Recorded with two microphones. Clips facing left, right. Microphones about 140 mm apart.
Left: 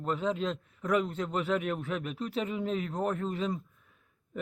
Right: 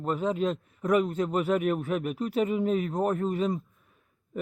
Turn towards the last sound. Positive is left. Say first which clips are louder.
# right 5 dB
turn(degrees=-5)  # may be behind; listen again after turning